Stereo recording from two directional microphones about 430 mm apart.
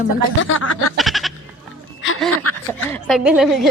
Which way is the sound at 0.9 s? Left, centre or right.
Centre.